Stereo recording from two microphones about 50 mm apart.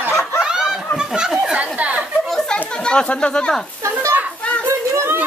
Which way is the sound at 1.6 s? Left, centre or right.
Right.